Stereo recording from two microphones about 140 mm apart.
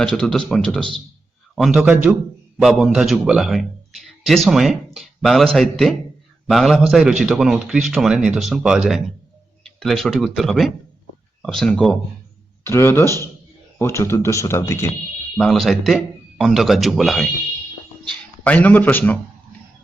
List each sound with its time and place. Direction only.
0.0 s a man's voice: 5° left (ahead or behind)
12.6 s a man's voice: 20° left (ahead or behind)
15.4 s a man's voice: centre (ahead or behind)
18.4 s a man's voice: 10° left (ahead or behind)